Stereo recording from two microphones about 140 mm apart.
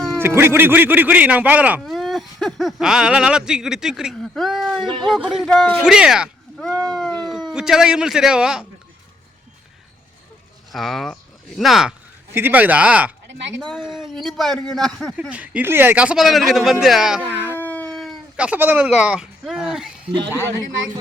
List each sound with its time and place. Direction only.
0.2 s speech: 15° right (ahead or behind)
1.8 s speech: centre (ahead or behind)
10.7 s speech: centre (ahead or behind)
12.3 s a man's voice: 15° right (ahead or behind); by 15.1 s 5° left (ahead or behind)
15.3 s a man's voice: 10° right (ahead or behind)
17.4 s a sound: 15° left (ahead or behind); by 19.9 s 5° right (ahead or behind)
20.3 s speech: 20° right (ahead or behind)